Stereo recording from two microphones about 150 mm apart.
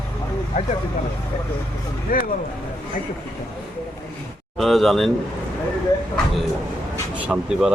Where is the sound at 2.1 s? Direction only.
70° left (ahead or behind).